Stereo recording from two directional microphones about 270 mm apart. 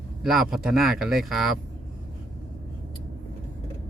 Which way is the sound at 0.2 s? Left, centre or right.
Centre.